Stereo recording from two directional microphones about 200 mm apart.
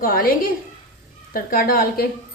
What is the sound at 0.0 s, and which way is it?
A woman's voice, 45° left (ahead or behind).